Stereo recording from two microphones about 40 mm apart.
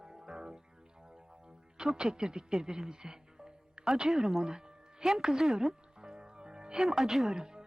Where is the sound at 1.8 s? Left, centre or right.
Right.